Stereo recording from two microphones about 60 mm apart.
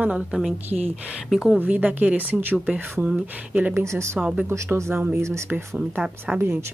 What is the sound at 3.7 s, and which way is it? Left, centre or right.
Speech, right.